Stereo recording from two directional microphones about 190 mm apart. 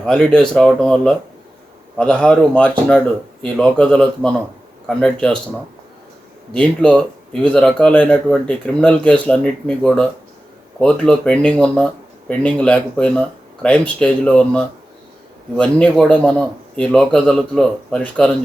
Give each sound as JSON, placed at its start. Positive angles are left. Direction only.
{"t": 0.0, "sound": "a man's voice", "side_deg": 5}
{"t": 6.5, "sound": "a man's voice", "side_deg": 5}